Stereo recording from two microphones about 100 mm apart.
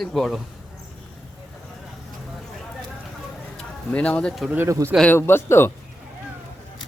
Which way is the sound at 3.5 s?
10° left (ahead or behind).